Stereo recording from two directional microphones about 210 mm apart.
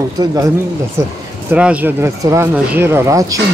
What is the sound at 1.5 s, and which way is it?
Speech, 5° right (ahead or behind).